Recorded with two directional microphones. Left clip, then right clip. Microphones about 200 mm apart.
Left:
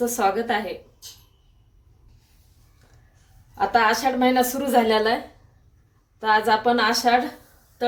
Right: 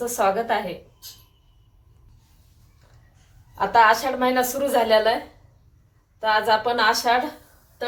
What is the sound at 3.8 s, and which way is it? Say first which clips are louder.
A woman's voice: right 3 dB; 55° left (ahead or behind).